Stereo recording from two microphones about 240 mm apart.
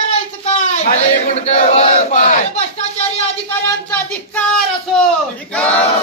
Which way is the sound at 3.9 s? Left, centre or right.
Centre.